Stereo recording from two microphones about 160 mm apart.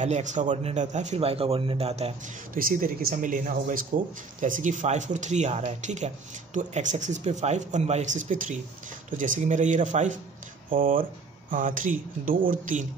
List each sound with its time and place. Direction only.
0.0 s speech: 50° right (ahead or behind)
2.5 s speech: 60° right (ahead or behind)
10.7 s speech: 60° right (ahead or behind)